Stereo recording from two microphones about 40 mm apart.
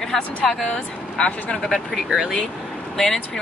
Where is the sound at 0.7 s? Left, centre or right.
Left.